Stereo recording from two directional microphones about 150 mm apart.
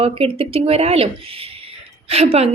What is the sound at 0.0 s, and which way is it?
A woman's voice, 40° right (ahead or behind).